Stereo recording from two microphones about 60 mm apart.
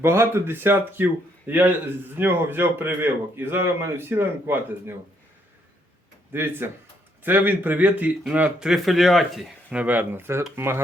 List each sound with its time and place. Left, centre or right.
0.0 s speech: right
6.3 s speech: right; by 9.4 s centre
9.6 s speech: right
10.1 s speech: right